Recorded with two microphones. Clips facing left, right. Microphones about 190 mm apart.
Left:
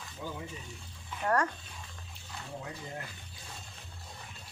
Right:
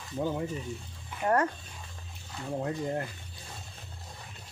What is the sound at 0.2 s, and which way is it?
Speech, 50° right (ahead or behind).